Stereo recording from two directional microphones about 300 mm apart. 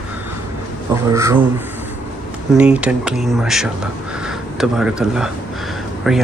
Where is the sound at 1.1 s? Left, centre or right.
Centre.